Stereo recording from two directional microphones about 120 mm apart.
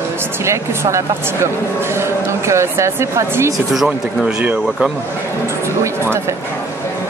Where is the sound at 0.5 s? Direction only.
25° right (ahead or behind).